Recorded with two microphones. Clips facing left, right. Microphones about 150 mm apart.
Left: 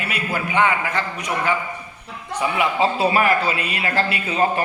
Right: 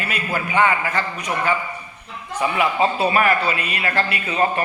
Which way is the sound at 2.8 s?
25° left (ahead or behind).